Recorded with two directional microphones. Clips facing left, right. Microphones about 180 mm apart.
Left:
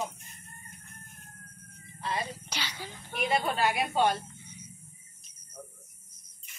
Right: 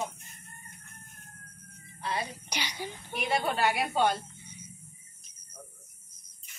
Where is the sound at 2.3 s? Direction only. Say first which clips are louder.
Right 1 dB; 15° right (ahead or behind).